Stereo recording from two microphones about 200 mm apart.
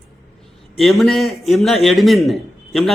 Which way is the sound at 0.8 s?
Centre (ahead or behind).